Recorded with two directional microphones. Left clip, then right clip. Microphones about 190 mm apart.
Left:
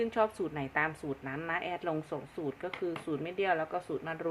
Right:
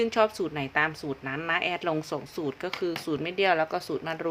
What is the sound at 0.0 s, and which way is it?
A woman's voice, 25° right (ahead or behind).